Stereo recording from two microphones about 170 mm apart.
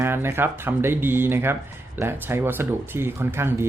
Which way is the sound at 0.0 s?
15° right (ahead or behind).